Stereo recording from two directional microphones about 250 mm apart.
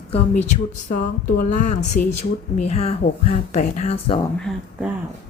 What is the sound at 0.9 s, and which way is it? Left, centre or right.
A woman's voice, left.